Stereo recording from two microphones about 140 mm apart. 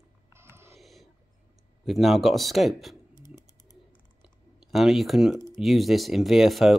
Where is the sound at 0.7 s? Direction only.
Centre (ahead or behind).